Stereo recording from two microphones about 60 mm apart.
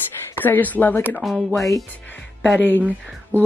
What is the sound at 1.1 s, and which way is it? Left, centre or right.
Speech, centre.